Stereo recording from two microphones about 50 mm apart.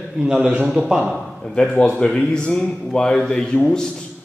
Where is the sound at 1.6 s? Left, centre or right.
Centre.